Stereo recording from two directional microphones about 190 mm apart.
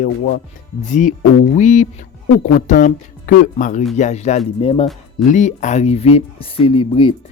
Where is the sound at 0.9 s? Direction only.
40° left (ahead or behind).